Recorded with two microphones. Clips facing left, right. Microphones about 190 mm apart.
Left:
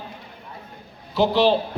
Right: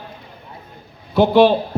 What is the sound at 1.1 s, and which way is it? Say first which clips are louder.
Speech: right 6 dB; 55° right (ahead or behind).